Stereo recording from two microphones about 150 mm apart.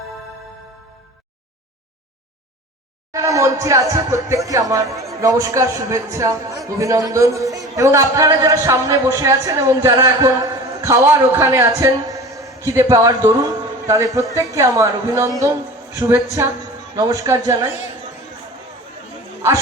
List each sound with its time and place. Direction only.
3.1 s a man's voice: 20° right (ahead or behind)